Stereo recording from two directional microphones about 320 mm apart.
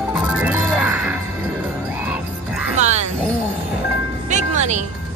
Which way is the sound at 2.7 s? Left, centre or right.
Right.